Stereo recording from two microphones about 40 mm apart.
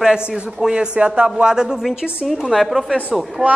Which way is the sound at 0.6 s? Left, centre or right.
Centre.